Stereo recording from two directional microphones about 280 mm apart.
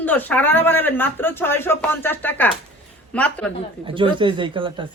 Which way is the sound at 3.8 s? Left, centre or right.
Centre.